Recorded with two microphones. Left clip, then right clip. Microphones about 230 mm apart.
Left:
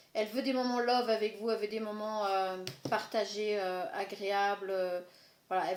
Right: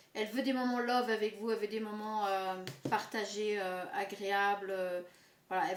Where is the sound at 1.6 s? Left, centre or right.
Centre.